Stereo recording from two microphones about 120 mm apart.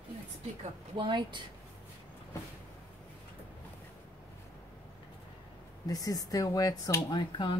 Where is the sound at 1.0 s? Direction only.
40° right (ahead or behind).